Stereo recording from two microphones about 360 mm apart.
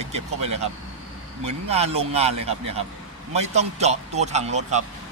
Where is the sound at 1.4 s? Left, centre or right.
Centre.